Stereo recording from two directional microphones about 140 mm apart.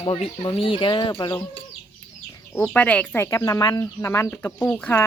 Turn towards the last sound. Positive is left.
turn(degrees=10)  # may be behind; listen again after turning